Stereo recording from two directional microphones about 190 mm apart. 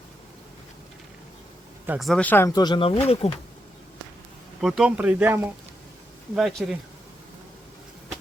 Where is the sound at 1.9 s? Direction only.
Centre (ahead or behind); by 3.3 s 30° left (ahead or behind).